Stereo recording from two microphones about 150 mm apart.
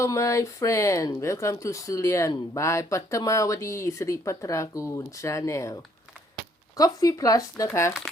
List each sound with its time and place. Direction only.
0.0 s speech: 20° left (ahead or behind)